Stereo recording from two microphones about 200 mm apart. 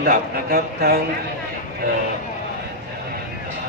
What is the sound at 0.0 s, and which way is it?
A man's voice, 50° right (ahead or behind).